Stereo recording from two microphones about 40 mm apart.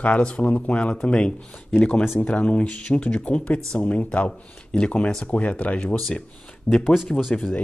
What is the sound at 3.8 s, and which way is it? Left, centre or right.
Speech, left.